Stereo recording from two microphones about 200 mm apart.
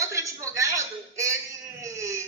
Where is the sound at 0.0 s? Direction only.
15° right (ahead or behind).